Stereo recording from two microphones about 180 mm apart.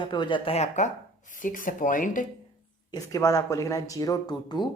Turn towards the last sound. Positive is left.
turn(degrees=25)  # may be behind; listen again after turning